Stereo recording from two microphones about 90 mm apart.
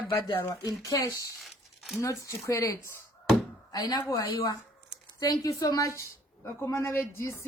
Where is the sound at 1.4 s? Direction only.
Centre (ahead or behind).